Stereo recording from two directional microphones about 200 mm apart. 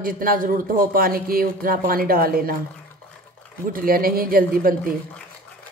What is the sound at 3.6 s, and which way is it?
A woman's voice, 45° right (ahead or behind).